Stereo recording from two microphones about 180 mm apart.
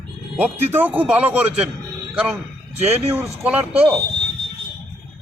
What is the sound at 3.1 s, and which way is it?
Speech, 10° right (ahead or behind).